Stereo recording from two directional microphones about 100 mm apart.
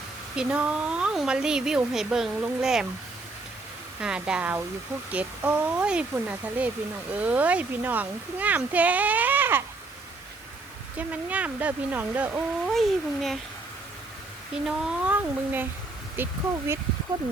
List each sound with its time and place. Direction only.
0.3 s speech: 15° right (ahead or behind)
4.0 s speech: 10° right (ahead or behind)
10.9 s speech: 15° right (ahead or behind)
12.6 s speech: centre (ahead or behind)
14.5 s speech: 5° right (ahead or behind); by 16.7 s 20° right (ahead or behind)